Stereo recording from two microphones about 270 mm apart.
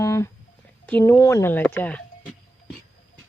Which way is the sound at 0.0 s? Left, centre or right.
Centre.